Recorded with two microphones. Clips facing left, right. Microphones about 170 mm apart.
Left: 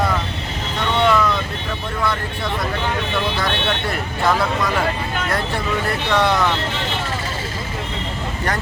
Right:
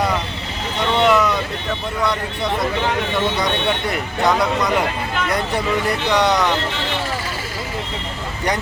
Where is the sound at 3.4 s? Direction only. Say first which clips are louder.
Right 2 dB; 20° right (ahead or behind).